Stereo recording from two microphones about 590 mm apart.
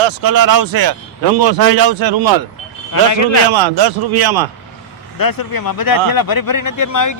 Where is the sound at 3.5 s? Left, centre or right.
Right.